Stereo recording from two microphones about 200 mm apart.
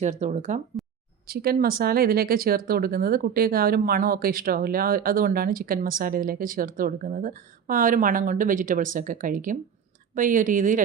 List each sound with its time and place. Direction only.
0.0 s speech: 35° right (ahead or behind)
1.3 s speech: 50° right (ahead or behind)